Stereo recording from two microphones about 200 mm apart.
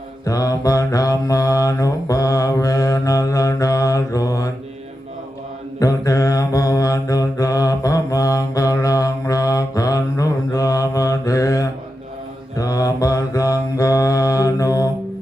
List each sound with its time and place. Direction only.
0.3 s mantra: 15° left (ahead or behind)
5.8 s mantra: 15° left (ahead or behind)